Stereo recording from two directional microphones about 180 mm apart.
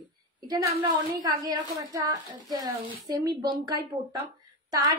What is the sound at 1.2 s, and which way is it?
Speech, 20° right (ahead or behind).